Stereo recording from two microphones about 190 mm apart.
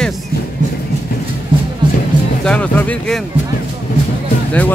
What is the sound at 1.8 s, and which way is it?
Music, 25° right (ahead or behind).